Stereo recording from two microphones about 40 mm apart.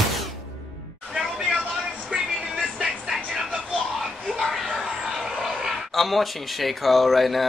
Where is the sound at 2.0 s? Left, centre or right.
Centre.